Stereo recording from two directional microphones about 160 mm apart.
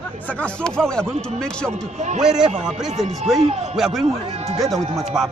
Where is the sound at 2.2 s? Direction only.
5° right (ahead or behind).